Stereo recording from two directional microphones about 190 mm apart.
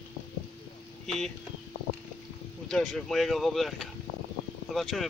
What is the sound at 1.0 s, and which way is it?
Speech, centre (ahead or behind).